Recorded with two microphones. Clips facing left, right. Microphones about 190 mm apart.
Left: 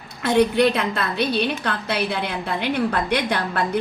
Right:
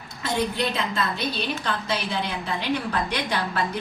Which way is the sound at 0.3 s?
60° left (ahead or behind).